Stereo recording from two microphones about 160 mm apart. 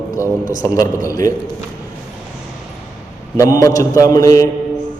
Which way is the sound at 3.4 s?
20° left (ahead or behind).